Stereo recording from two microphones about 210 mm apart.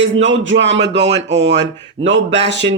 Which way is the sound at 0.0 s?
60° right (ahead or behind).